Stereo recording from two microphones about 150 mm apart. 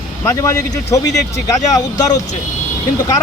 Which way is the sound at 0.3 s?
20° left (ahead or behind).